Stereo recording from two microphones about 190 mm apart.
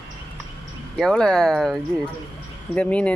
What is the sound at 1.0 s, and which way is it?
Speech, 5° left (ahead or behind).